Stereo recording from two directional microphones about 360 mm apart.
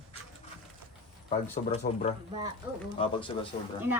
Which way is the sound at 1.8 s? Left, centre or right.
Centre.